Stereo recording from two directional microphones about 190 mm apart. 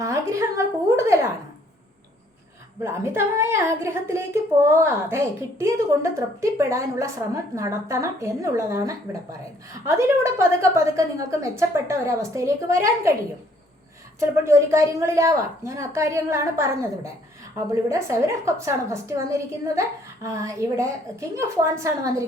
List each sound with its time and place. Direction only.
0.0 s a woman's voice: 15° right (ahead or behind)
2.8 s a woman's voice: 15° right (ahead or behind)
10.3 s a woman's voice: 15° right (ahead or behind)
14.2 s a woman's voice: 15° right (ahead or behind)